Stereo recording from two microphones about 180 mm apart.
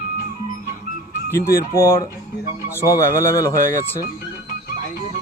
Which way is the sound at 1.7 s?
15° left (ahead or behind).